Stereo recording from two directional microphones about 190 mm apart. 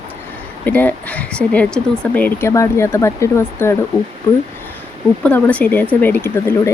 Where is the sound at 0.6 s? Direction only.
10° left (ahead or behind).